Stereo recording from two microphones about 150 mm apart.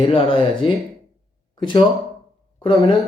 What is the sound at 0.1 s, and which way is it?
Speech, 35° left (ahead or behind).